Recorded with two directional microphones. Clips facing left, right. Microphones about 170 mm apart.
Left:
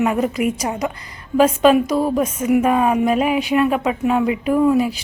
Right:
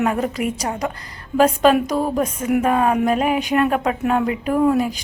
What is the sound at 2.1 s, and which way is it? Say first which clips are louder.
Speech: left 3 dB; centre (ahead or behind).